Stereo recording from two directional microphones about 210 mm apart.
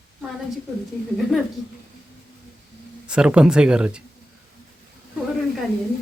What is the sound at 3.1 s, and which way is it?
Speech, 5° right (ahead or behind).